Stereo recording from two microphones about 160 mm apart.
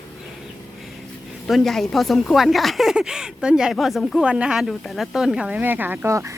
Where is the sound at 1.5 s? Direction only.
Centre (ahead or behind).